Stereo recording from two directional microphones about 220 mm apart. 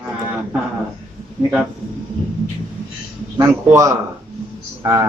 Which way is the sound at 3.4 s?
15° right (ahead or behind).